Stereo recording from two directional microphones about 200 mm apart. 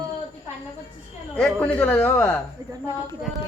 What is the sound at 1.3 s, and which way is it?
A man's voice, 5° left (ahead or behind).